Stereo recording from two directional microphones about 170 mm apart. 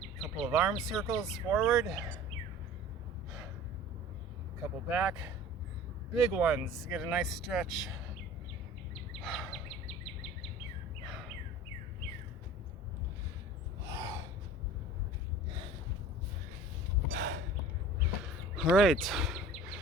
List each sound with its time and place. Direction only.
0.2 s speech: 5° right (ahead or behind)
4.9 s speech: 5° right (ahead or behind)
6.3 s speech: 5° right (ahead or behind)
9.2 s a sound: centre (ahead or behind)
13.8 s gasp: 20° right (ahead or behind)
17.2 s a sound: 55° right (ahead or behind)
18.5 s speech: centre (ahead or behind)